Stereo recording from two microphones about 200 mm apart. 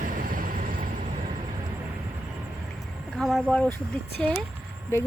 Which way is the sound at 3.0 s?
Centre (ahead or behind).